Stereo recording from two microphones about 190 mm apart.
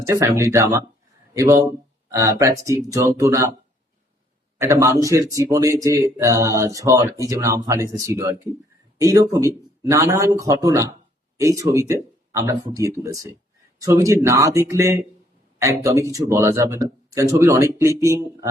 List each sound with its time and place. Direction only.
0.0 s speech: 15° right (ahead or behind)
4.5 s speech: 15° right (ahead or behind)